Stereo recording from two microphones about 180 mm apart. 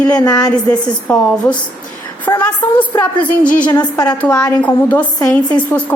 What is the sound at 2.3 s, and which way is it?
Speech, 20° left (ahead or behind).